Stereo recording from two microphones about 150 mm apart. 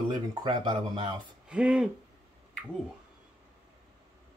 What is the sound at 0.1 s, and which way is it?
Speech, 25° right (ahead or behind).